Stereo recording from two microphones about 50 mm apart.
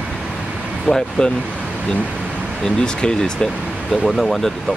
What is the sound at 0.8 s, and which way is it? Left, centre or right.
Speech, centre.